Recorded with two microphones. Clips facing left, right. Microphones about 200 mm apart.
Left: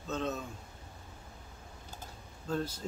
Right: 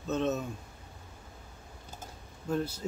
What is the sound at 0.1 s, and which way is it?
Speech, 20° right (ahead or behind).